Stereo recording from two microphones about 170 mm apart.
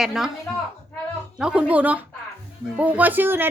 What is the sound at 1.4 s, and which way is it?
Speech, 5° right (ahead or behind).